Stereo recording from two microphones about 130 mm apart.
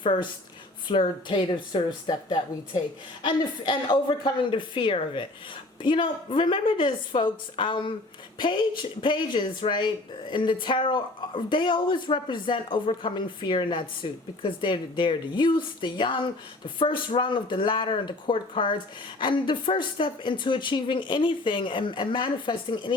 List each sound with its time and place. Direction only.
0.0 s speech: 40° left (ahead or behind)